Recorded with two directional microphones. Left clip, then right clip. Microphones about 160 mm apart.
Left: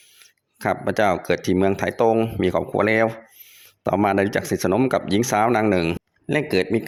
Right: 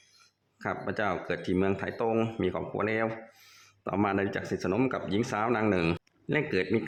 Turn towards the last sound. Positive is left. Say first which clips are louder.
# left 7 dB
turn(degrees=30)  # may be behind; listen again after turning